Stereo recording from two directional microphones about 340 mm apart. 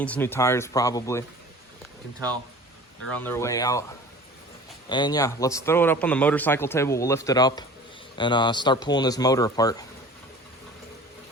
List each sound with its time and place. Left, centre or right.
0.0 s a man's voice: centre
3.1 s a man's voice: centre
4.9 s a man's voice: centre